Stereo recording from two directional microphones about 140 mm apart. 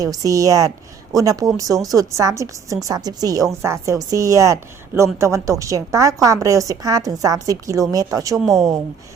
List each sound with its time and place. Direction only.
0.0 s a woman's voice: 25° right (ahead or behind)